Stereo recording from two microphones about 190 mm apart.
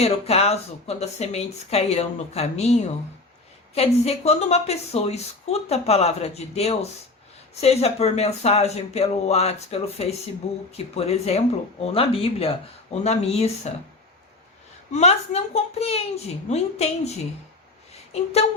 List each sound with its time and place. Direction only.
0.0 s a woman's voice: 35° left (ahead or behind)
14.9 s a woman's voice: 35° left (ahead or behind)
18.1 s a woman's voice: 35° left (ahead or behind)